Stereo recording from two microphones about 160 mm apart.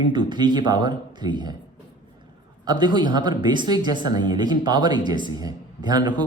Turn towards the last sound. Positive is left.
turn(degrees=-25)  # may be behind; listen again after turning